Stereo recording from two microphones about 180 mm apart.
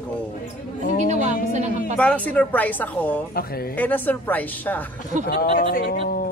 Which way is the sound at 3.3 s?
60° left (ahead or behind).